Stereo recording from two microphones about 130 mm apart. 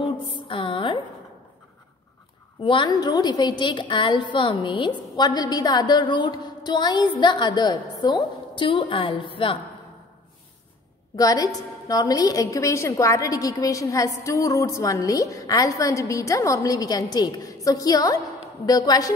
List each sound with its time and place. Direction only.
0.5 s music: 40° left (ahead or behind)
2.6 s a woman's voice: 40° left (ahead or behind)
11.1 s a woman's voice: 30° left (ahead or behind)